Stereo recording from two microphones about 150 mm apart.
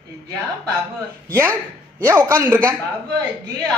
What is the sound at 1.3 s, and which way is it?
Speech, 15° right (ahead or behind).